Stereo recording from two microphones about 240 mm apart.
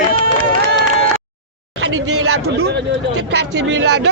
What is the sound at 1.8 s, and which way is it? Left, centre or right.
Speech, right.